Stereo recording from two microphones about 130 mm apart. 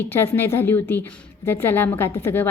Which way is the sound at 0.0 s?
15° left (ahead or behind).